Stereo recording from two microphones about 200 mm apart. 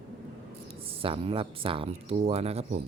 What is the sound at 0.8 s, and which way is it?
Speech, 25° right (ahead or behind).